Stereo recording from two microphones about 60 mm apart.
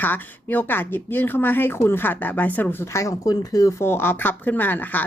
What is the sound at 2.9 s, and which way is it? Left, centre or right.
Speech, left.